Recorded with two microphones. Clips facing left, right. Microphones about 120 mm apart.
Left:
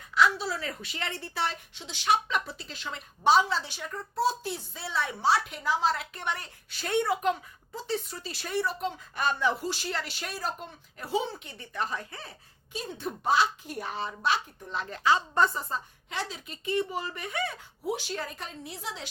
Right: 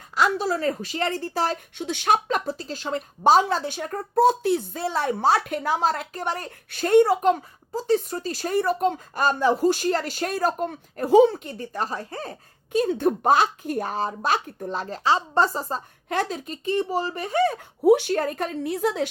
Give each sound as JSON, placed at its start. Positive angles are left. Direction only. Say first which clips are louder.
{"t": 0.1, "sound": "speech", "louder": "right 3 dB", "side_deg": -45}
{"t": 1.7, "sound": "speech", "louder": "right 3 dB", "side_deg": -55}
{"t": 11.4, "sound": "speech", "louder": "right 5 dB", "side_deg": -40}
{"t": 16.0, "sound": "speech", "louder": "right 10 dB", "side_deg": -50}
{"t": 17.8, "sound": "a woman's voice", "louder": "right 15 dB", "side_deg": -60}